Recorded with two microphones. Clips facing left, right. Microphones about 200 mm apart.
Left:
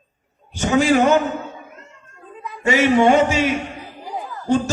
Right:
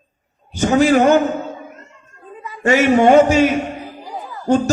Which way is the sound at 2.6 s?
45° right (ahead or behind).